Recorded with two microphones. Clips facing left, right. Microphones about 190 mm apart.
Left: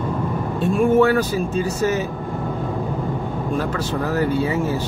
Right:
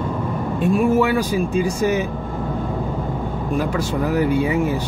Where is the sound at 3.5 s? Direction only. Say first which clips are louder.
Right 3 dB; 10° right (ahead or behind).